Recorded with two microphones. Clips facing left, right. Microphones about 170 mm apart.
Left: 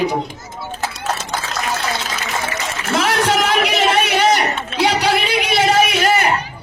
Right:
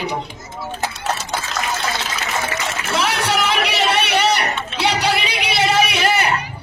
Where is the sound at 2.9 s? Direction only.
50° left (ahead or behind).